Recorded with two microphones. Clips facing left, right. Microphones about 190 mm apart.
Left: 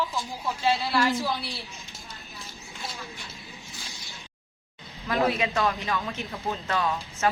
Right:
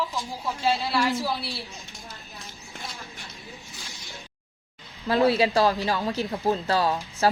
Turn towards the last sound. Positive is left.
turn(degrees=-35)  # may be behind; listen again after turning